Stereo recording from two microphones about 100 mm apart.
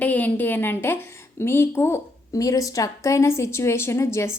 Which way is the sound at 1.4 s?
25° left (ahead or behind).